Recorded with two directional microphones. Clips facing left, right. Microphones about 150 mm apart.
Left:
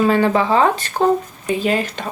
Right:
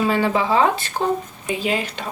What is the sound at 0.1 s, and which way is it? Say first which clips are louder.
Speech: left 4 dB; 50° left (ahead or behind).